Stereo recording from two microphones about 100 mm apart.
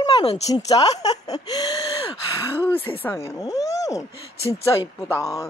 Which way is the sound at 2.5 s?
20° left (ahead or behind).